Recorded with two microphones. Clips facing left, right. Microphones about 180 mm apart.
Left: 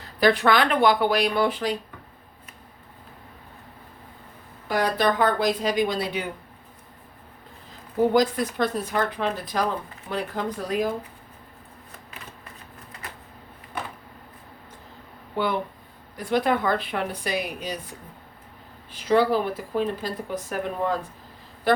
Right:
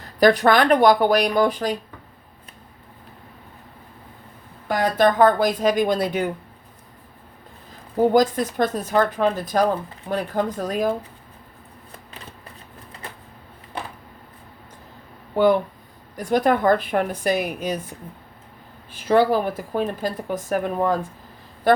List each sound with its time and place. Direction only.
0.2 s speech: 45° right (ahead or behind)
4.7 s speech: 45° right (ahead or behind)
8.1 s speech: 45° right (ahead or behind)
16.1 s speech: 45° right (ahead or behind)
18.9 s speech: 50° right (ahead or behind)